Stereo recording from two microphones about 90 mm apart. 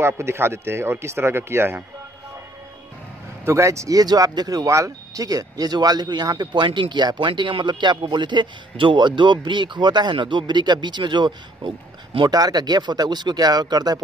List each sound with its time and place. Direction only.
0.0 s speech: 30° right (ahead or behind)
3.4 s speech: 35° right (ahead or behind)
4.6 s speech: 35° right (ahead or behind); by 12.3 s 70° right (ahead or behind)
12.3 s speech: 45° right (ahead or behind)